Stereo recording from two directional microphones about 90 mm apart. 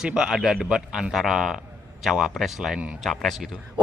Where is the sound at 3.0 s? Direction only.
Centre (ahead or behind).